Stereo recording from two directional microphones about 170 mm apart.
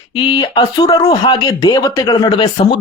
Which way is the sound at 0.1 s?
30° left (ahead or behind).